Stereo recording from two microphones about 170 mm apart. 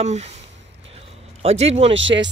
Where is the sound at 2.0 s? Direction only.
90° right.